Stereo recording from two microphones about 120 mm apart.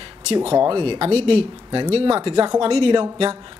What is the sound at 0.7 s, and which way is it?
Speech, 40° right (ahead or behind).